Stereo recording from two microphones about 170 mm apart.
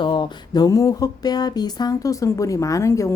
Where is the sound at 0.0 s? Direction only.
25° left (ahead or behind).